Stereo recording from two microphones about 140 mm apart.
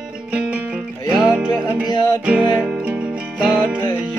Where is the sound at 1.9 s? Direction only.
30° left (ahead or behind).